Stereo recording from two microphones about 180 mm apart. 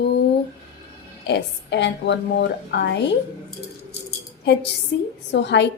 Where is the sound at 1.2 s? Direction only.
75° left (ahead or behind).